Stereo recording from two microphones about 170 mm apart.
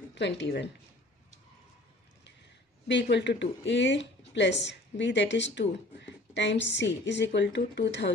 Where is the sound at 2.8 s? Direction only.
90° left.